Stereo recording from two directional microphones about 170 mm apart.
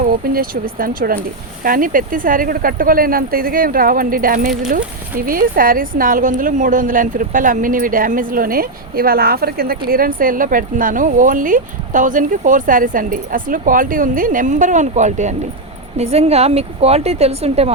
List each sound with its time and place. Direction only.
0.1 s speech: 55° right (ahead or behind); by 17.7 s 35° right (ahead or behind)